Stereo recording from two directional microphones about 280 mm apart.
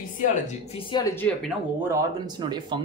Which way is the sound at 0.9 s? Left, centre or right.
Centre.